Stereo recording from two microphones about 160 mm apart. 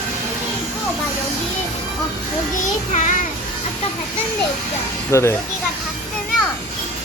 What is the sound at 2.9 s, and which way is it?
Speech, 50° left (ahead or behind).